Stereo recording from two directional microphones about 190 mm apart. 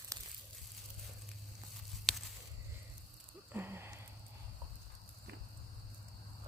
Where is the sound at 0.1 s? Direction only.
15° right (ahead or behind).